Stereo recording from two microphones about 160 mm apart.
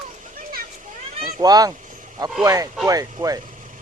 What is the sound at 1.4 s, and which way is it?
Speech, 25° right (ahead or behind).